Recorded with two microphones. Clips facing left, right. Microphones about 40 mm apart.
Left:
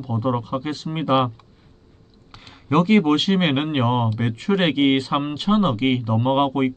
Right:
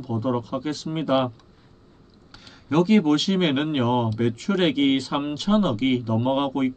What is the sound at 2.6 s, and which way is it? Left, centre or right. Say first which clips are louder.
Speech: left 2 dB; left.